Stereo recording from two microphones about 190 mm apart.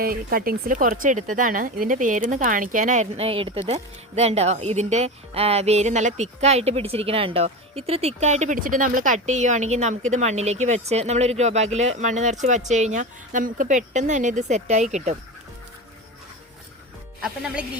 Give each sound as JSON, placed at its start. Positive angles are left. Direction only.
{"t": 0.0, "sound": "speech", "side_deg": -50}
{"t": 17.2, "sound": "speech", "side_deg": -5}